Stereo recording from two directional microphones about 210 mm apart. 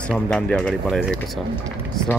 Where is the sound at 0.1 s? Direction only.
5° left (ahead or behind).